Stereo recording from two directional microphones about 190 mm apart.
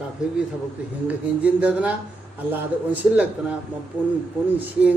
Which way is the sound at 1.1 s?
5° right (ahead or behind).